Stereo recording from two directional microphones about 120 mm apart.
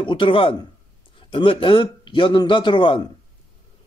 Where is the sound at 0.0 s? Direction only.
45° left (ahead or behind).